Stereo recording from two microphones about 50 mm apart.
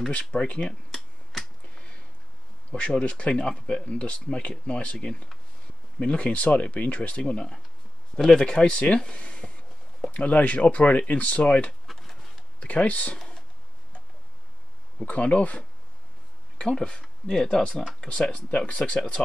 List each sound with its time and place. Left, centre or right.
0.1 s speech: left
0.9 s finger snapping: centre
2.7 s speech: left
11.9 s a sound: centre
12.5 s speech: left
15.0 s speech: left